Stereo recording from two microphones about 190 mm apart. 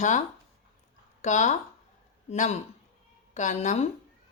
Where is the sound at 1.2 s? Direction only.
40° left (ahead or behind).